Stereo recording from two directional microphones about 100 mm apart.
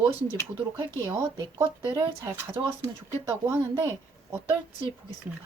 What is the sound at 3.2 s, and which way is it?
Speech, 25° right (ahead or behind).